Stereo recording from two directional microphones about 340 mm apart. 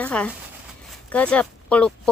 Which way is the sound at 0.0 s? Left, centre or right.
Centre.